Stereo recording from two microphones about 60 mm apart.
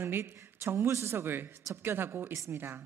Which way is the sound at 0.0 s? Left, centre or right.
Right.